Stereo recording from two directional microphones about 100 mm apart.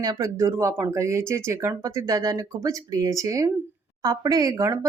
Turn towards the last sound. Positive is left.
turn(degrees=-35)  # may be behind; listen again after turning